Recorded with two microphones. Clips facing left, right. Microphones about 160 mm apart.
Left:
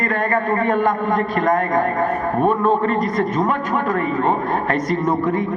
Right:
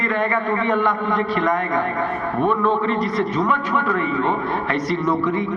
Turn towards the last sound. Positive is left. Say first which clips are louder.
# left 1 dB
turn(degrees=45)  # may be behind; listen again after turning